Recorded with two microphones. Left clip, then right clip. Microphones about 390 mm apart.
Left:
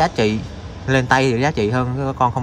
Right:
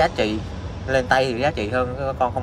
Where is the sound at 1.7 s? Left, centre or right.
Left.